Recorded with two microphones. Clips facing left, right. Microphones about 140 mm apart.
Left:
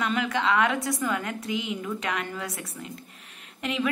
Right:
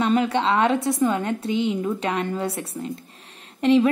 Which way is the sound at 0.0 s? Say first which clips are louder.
Right 6 dB; 30° right (ahead or behind).